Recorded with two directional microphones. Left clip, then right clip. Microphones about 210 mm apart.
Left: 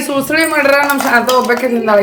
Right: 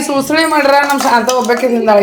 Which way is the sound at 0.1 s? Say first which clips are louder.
Right 1 dB; centre (ahead or behind).